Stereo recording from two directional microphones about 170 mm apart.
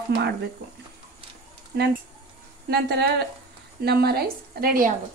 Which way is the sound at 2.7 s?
75° right (ahead or behind).